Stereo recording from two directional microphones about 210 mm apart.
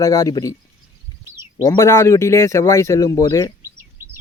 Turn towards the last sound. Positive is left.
turn(degrees=15)  # may be behind; listen again after turning